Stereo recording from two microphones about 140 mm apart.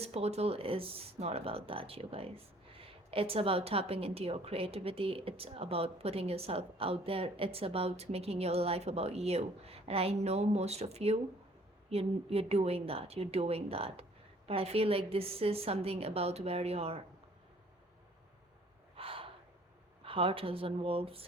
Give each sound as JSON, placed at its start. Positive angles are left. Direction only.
{"t": 0.0, "sound": "speech", "side_deg": -45}
{"t": 18.9, "sound": "gasp", "side_deg": -40}
{"t": 20.1, "sound": "speech", "side_deg": -40}